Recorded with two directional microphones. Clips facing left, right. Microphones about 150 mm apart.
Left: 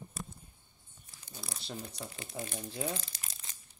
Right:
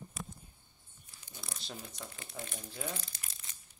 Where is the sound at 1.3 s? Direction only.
40° left (ahead or behind).